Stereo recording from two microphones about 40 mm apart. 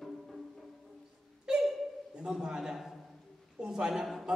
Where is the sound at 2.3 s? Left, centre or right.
Centre.